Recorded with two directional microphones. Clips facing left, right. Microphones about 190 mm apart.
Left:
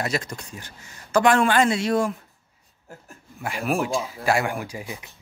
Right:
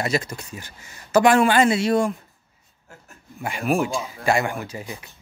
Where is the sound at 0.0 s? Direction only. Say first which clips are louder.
Right 3 dB; centre (ahead or behind).